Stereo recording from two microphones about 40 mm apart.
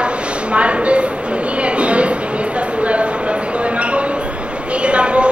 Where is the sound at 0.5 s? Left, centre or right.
Right.